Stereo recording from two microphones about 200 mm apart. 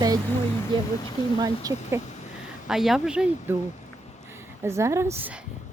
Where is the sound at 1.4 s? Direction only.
20° right (ahead or behind).